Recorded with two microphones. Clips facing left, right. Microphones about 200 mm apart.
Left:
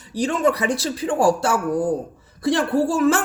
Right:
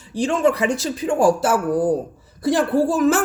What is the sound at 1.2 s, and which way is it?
A woman's voice, centre (ahead or behind).